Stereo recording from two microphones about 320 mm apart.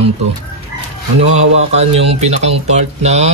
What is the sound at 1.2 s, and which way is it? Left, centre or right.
Speech, centre.